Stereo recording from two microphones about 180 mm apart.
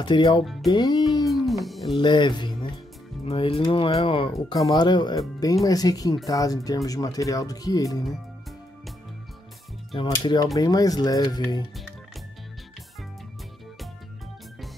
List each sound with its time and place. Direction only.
0.0 s speech: 25° left (ahead or behind)
1.2 s a sound: centre (ahead or behind)
2.0 s speech: 25° left (ahead or behind)
9.9 s speech: 25° left (ahead or behind)